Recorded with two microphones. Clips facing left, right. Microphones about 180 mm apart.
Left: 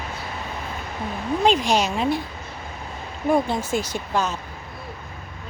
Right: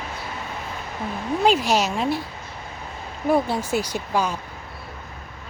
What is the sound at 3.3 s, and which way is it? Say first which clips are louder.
Speech: even; 10° right (ahead or behind).